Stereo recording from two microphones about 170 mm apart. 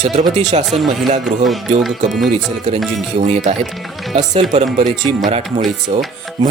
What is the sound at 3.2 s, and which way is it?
Speech, 40° right (ahead or behind).